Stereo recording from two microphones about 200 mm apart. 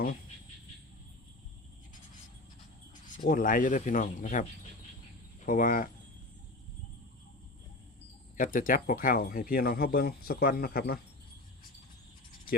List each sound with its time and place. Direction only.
3.2 s speech: 45° left (ahead or behind)
5.5 s speech: 45° left (ahead or behind)
8.4 s speech: 45° left (ahead or behind)